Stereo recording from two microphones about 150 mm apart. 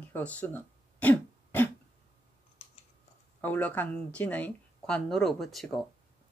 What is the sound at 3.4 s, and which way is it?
Speech, 10° left (ahead or behind).